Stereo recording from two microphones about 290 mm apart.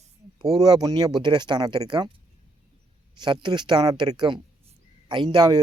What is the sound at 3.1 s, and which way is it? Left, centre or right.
Speech, centre.